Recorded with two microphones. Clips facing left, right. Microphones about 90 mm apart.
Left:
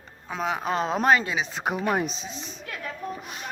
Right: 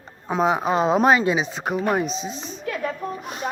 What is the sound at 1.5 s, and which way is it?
Speech, 5° left (ahead or behind).